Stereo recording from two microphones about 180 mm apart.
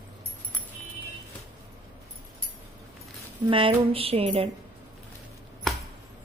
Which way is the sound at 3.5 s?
30° right (ahead or behind).